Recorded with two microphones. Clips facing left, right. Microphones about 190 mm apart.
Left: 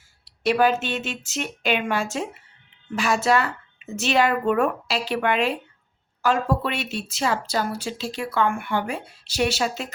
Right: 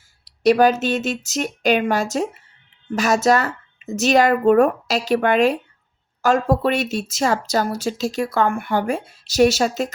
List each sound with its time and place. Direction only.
0.3 s speech: 40° right (ahead or behind)